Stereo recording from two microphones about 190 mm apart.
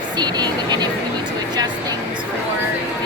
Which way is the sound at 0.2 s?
20° right (ahead or behind).